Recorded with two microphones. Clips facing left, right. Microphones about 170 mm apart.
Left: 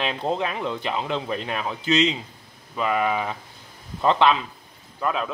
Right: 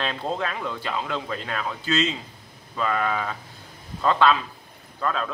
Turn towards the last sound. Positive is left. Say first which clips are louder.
# left 1 dB
turn(degrees=15)  # may be behind; listen again after turning